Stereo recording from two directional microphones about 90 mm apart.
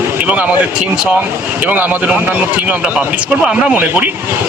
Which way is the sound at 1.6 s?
15° right (ahead or behind).